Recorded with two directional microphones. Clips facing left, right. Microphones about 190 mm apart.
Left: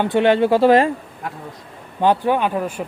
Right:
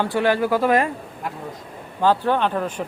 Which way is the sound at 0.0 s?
25° left (ahead or behind).